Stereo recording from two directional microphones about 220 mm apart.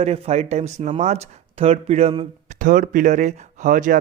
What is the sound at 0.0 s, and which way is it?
Speech, 30° right (ahead or behind).